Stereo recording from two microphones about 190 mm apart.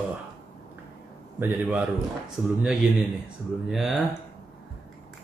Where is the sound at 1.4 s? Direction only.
10° right (ahead or behind).